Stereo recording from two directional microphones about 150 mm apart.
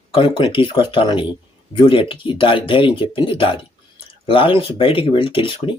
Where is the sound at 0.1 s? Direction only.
35° left (ahead or behind).